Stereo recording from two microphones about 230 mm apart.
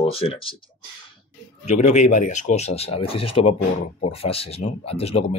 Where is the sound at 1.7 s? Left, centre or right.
Left.